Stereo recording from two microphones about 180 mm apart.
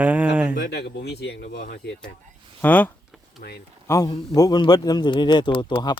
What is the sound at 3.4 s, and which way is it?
Speech, 65° left (ahead or behind).